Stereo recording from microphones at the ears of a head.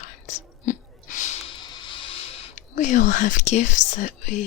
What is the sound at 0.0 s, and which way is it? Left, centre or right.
Whispering, left.